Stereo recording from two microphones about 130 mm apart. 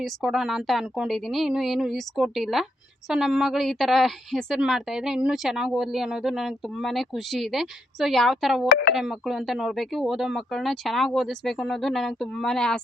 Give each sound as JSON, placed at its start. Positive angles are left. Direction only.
{"t": 0.0, "sound": "a woman's voice", "side_deg": 0}